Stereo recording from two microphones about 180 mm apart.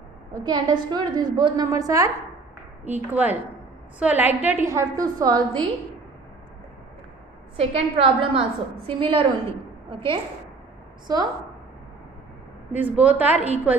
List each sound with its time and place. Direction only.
0.4 s a woman's voice: 20° right (ahead or behind)
7.5 s a woman's voice: 30° right (ahead or behind)
12.7 s a woman's voice: 10° right (ahead or behind)